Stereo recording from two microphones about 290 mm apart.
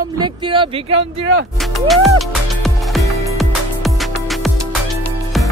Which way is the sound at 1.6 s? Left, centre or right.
Centre.